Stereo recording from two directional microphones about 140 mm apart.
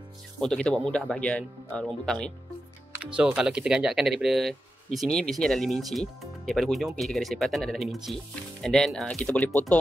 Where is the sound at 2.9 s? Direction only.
10° right (ahead or behind).